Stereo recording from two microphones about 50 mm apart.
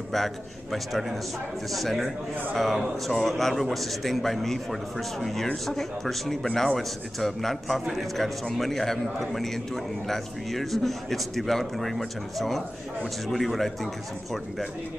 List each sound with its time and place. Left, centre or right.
0.1 s a man's voice: centre